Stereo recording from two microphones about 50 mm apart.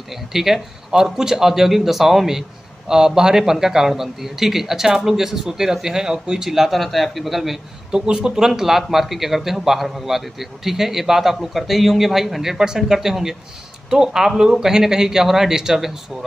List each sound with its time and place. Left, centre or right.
0.3 s a man's voice: centre
7.9 s a man's voice: centre